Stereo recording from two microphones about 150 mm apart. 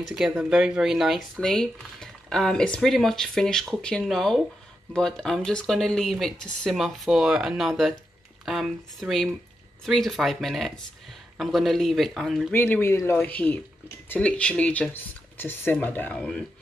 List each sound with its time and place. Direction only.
0.0 s speech: 5° right (ahead or behind)
12.5 s speech: 15° left (ahead or behind)